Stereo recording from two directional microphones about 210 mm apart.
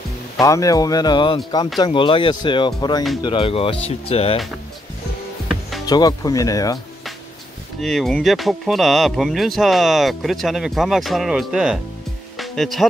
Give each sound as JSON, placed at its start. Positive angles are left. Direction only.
{"t": 0.4, "sound": "speech", "side_deg": 15}
{"t": 5.9, "sound": "speech", "side_deg": 20}
{"t": 7.8, "sound": "speech", "side_deg": 0}
{"t": 12.4, "sound": "music", "side_deg": 0}